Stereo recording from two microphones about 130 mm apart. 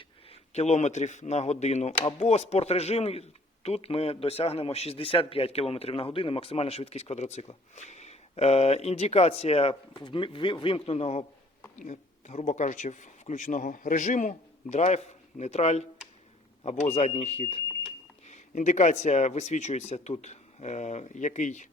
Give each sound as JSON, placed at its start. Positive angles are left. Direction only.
{"t": 0.3, "sound": "speech", "side_deg": 60}
{"t": 18.3, "sound": "speech", "side_deg": 65}